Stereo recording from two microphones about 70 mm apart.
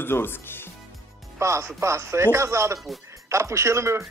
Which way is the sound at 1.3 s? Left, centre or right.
Right.